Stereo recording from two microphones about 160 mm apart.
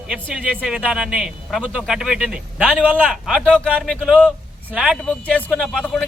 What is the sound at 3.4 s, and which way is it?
Speech, 5° left (ahead or behind).